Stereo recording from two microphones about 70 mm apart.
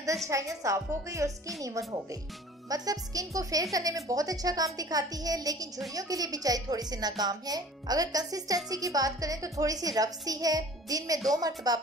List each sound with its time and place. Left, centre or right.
0.3 s a woman's voice: right
2.7 s speech: right